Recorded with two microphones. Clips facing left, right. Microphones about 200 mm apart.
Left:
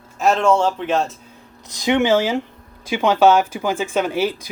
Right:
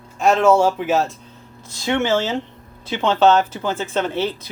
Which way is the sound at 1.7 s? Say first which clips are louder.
Left 3 dB; 15° left (ahead or behind).